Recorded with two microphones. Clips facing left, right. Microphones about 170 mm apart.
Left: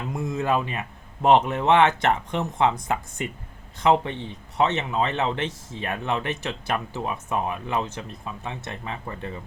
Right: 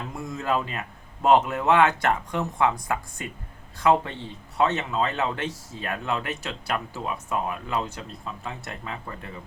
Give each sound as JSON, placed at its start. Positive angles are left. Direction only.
{"t": 0.3, "sound": "a man's voice", "side_deg": 20}